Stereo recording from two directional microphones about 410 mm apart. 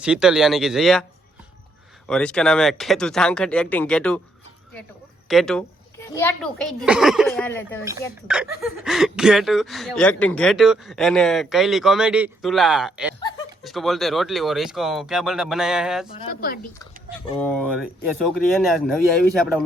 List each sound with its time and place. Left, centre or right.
0.0 s speech: centre
2.0 s speech: centre
5.3 s speech: centre
16.1 s speech: left
17.2 s speech: centre